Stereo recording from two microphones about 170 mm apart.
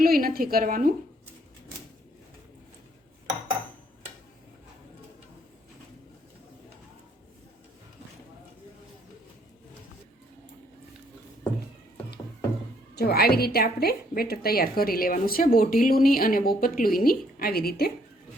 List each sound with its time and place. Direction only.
0.0 s a woman's voice: 60° right (ahead or behind)
13.0 s a woman's voice: 65° left (ahead or behind)